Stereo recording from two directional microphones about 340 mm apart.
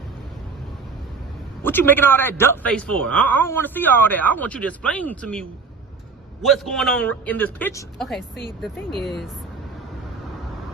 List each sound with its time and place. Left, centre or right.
1.6 s a man's voice: centre